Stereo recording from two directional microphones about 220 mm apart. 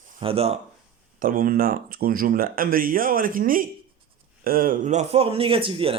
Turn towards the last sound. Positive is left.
turn(degrees=-25)  # may be behind; listen again after turning